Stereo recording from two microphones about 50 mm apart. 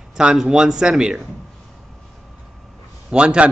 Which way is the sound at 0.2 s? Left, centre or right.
Centre.